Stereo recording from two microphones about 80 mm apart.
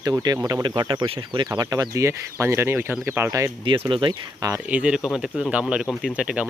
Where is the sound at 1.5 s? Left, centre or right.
Right.